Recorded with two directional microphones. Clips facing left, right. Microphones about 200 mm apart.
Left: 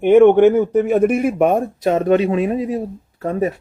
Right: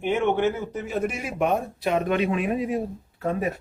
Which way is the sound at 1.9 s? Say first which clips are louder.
Left 7 dB; 35° left (ahead or behind).